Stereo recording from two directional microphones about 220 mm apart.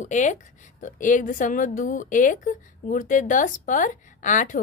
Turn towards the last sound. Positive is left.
turn(degrees=35)  # may be behind; listen again after turning